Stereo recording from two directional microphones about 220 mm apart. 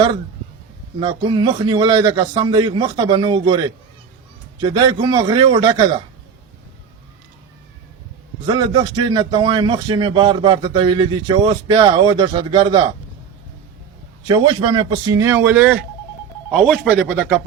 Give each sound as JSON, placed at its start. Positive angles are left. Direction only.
{"t": 0.9, "sound": "a man's voice", "side_deg": -20}
{"t": 4.6, "sound": "a man's voice", "side_deg": -20}
{"t": 8.4, "sound": "a man's voice", "side_deg": -20}
{"t": 14.3, "sound": "a man's voice", "side_deg": -20}